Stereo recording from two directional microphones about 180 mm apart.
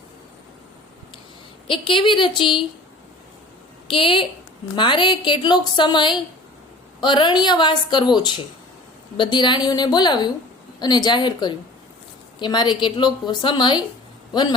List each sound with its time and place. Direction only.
1.6 s a woman's voice: 30° left (ahead or behind)
3.8 s a woman's voice: 30° left (ahead or behind)